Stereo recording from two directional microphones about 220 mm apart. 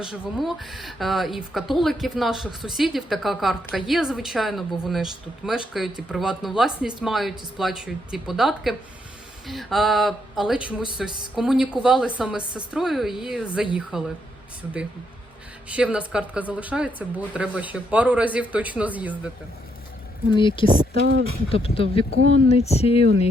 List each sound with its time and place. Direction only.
0.0 s speech: centre (ahead or behind)
15.7 s speech: 5° right (ahead or behind)
20.3 s speech: 20° left (ahead or behind)
20.7 s speech: 45° right (ahead or behind)
21.5 s speech: 25° left (ahead or behind)